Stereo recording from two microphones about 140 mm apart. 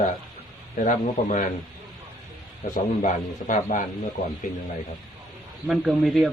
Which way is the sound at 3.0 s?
65° left (ahead or behind).